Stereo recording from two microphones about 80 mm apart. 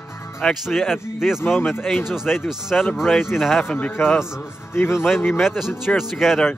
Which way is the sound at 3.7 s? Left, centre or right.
Centre.